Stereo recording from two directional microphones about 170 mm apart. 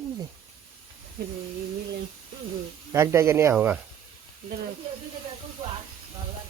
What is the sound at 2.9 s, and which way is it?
Speech, 15° right (ahead or behind).